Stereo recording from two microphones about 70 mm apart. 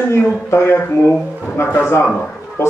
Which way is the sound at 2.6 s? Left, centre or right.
Left.